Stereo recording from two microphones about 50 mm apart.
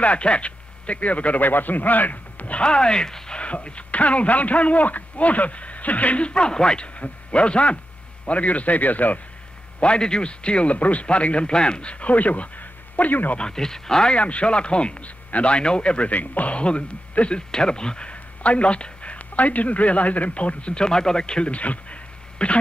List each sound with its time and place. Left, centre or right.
0.0 s a man's voice: left
3.3 s a man's voice: left
9.8 s a man's voice: centre
13.4 s speech: centre
14.1 s a man's voice: left
16.1 s a man's voice: left